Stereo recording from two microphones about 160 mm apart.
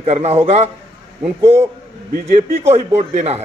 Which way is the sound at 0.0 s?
40° right (ahead or behind).